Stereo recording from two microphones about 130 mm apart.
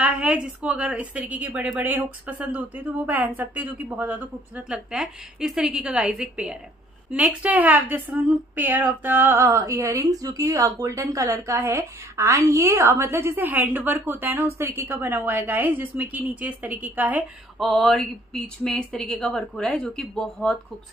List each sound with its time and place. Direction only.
0.0 s a woman's voice: 10° right (ahead or behind)
17.6 s speech: centre (ahead or behind)